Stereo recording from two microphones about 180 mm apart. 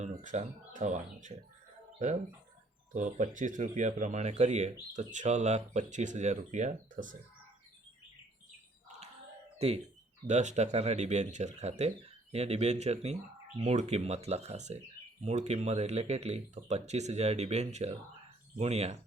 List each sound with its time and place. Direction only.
0.0 s speech: 40° right (ahead or behind)
2.9 s speech: 45° right (ahead or behind)
9.6 s speech: 35° right (ahead or behind)